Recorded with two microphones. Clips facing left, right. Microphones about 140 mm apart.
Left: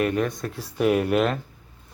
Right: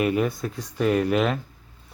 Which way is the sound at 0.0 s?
5° right (ahead or behind).